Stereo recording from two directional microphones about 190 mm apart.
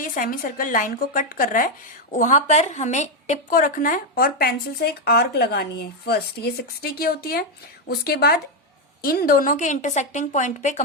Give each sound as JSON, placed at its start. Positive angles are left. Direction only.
{"t": 0.0, "sound": "a woman's voice", "side_deg": 45}